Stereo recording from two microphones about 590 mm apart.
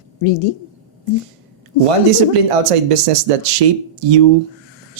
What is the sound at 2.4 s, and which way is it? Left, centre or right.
Speech, right.